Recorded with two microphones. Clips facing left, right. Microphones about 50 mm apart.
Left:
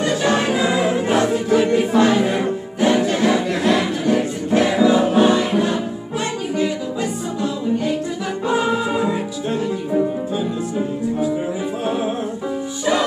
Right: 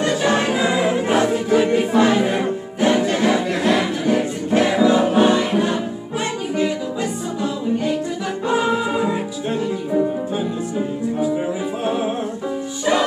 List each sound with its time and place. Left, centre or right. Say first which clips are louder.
0.0 s music: even; centre
8.5 s music: even; centre
11.8 s music: right 1 dB; right